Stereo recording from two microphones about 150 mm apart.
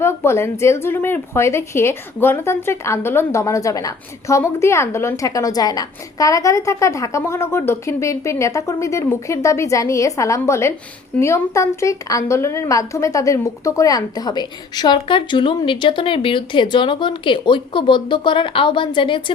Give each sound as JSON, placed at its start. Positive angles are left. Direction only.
{"t": 0.0, "sound": "a woman's voice", "side_deg": 15}